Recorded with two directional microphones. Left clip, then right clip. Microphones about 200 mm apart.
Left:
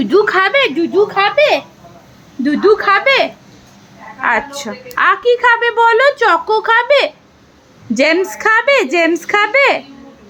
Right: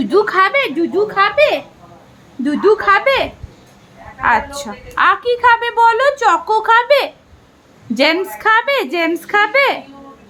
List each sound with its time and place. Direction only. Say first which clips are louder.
0.0 s a woman's voice: left 1 dB; 10° left (ahead or behind)